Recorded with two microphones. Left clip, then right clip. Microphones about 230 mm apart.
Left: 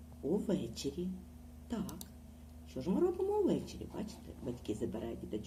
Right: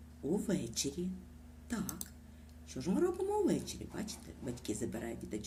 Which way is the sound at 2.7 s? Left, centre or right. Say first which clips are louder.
Left 1 dB; right.